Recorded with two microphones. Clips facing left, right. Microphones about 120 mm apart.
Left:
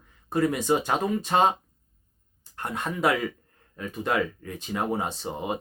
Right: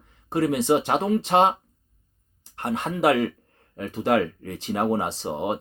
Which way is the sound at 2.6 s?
30° right (ahead or behind).